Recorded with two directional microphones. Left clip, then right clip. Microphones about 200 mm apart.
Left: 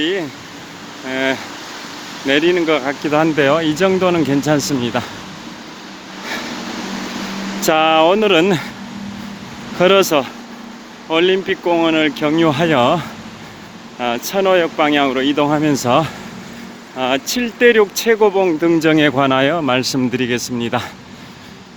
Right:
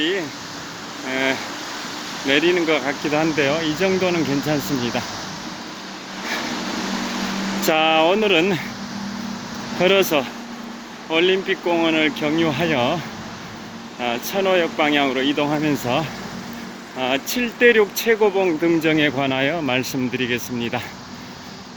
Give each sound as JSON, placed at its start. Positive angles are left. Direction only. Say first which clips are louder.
{"t": 0.0, "sound": "a sound", "louder": "left 3 dB", "side_deg": 30}
{"t": 1.1, "sound": "speech", "louder": "left 3 dB", "side_deg": 30}
{"t": 7.7, "sound": "speech", "louder": "left 5 dB", "side_deg": 30}
{"t": 9.8, "sound": "speech", "louder": "left 5 dB", "side_deg": 30}
{"t": 14.0, "sound": "speech", "louder": "left 5 dB", "side_deg": 35}